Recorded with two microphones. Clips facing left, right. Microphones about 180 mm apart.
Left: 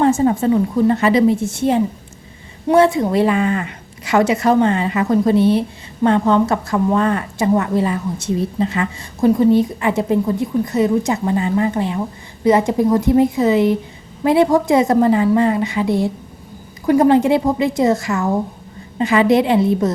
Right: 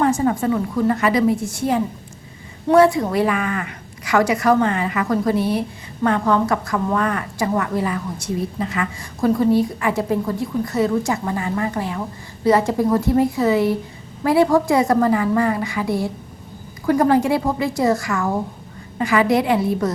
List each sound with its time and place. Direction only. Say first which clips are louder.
0.0 s a woman's voice: left 4 dB; 25° left (ahead or behind)